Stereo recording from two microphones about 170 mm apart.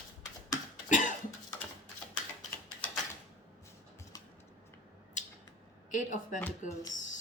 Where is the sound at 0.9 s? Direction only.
50° left (ahead or behind).